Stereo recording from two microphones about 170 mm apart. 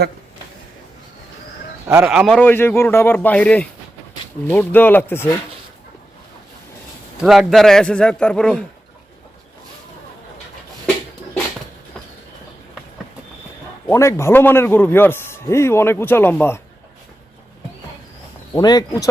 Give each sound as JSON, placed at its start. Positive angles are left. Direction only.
{"t": 1.9, "sound": "a man's voice", "side_deg": -5}
{"t": 7.2, "sound": "speech", "side_deg": 0}
{"t": 13.8, "sound": "a man's voice", "side_deg": 15}
{"t": 18.5, "sound": "speech", "side_deg": 25}